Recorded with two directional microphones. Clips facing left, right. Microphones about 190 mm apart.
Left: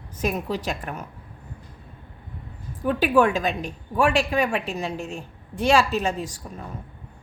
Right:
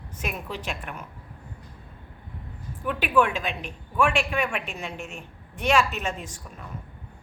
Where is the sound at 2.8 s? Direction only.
40° left (ahead or behind).